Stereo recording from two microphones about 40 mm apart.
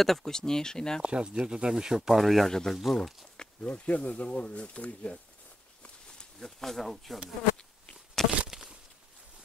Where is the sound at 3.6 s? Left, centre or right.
Left.